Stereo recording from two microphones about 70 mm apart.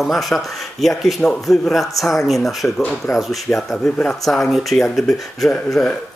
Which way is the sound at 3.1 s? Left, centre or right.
Centre.